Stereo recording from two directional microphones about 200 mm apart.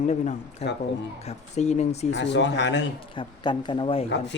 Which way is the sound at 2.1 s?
60° left (ahead or behind).